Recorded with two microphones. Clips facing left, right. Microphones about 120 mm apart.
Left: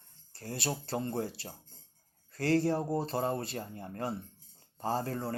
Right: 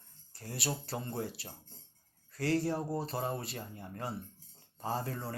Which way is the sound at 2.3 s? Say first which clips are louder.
Left 3 dB; 30° left (ahead or behind).